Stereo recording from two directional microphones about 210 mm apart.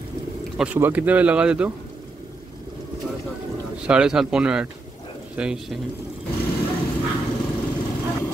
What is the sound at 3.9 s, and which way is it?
Speech, 5° right (ahead or behind).